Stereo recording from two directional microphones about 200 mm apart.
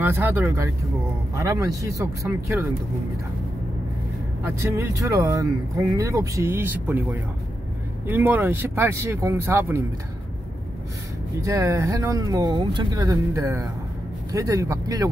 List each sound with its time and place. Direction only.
0.0 s speech: 10° right (ahead or behind)
4.7 s speech: 15° right (ahead or behind)
11.4 s speech: 15° right (ahead or behind)